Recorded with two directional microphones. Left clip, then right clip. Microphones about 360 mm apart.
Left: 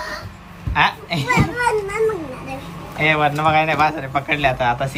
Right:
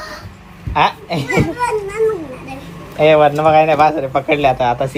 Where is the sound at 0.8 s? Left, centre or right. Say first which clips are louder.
Right 3 dB; centre.